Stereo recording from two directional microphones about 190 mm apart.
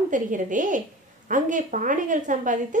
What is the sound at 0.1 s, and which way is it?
A woman's voice, 45° right (ahead or behind).